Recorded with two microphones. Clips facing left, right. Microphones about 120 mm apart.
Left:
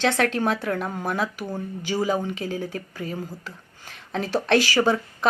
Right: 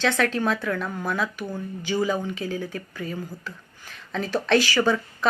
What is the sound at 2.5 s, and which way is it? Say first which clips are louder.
Speech: left 1 dB; 35° left (ahead or behind).